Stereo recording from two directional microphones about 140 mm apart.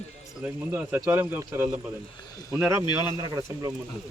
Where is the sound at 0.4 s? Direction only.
10° right (ahead or behind).